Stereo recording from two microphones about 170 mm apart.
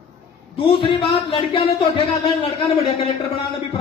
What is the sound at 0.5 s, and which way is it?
Speech, 30° left (ahead or behind).